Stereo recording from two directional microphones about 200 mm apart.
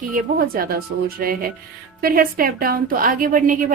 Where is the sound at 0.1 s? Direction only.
45° right (ahead or behind).